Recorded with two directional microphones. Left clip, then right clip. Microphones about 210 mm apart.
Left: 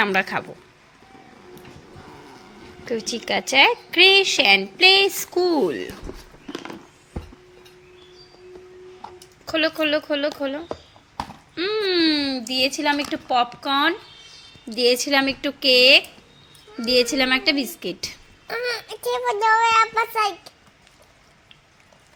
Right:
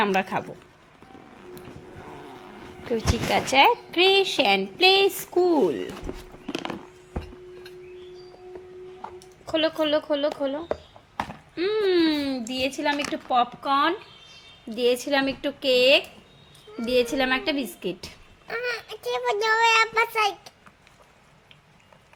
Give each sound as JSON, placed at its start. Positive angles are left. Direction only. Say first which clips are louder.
{"t": 0.0, "sound": "speech", "louder": "left 3 dB", "side_deg": -5}
{"t": 3.1, "sound": "a woman's voice", "louder": "even", "side_deg": 0}
{"t": 9.5, "sound": "a woman's voice", "louder": "left 2 dB", "side_deg": 0}
{"t": 18.4, "sound": "a child's voice", "louder": "left 3 dB", "side_deg": 25}
{"t": 19.2, "sound": "a woman's voice", "louder": "left 3 dB", "side_deg": 0}